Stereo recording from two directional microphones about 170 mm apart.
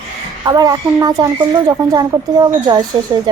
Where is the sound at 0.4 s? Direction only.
20° right (ahead or behind).